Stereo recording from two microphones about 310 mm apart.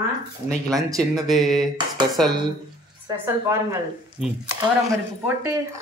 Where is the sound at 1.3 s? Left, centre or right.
Centre.